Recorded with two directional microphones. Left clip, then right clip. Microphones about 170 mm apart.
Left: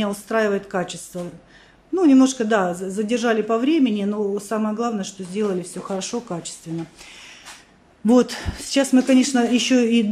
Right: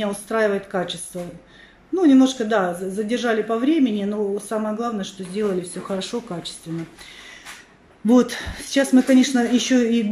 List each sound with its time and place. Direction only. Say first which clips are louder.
0.0 s a woman's voice: even; 5° left (ahead or behind)
8.1 s speech: even; 5° left (ahead or behind)